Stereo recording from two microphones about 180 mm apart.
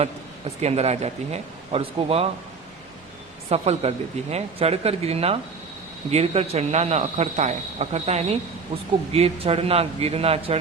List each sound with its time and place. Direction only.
0.0 s speech: 35° right (ahead or behind)
3.5 s speech: 35° right (ahead or behind)